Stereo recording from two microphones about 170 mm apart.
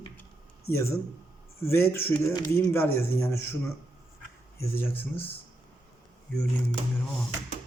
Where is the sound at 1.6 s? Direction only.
15° left (ahead or behind).